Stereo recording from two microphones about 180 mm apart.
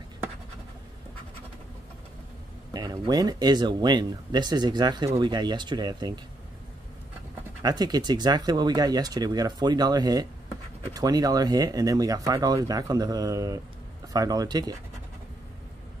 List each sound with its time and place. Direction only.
2.7 s speech: 20° right (ahead or behind)
7.6 s speech: 20° right (ahead or behind)